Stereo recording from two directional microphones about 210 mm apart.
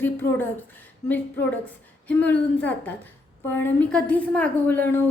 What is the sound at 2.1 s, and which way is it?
Speech, 5° left (ahead or behind).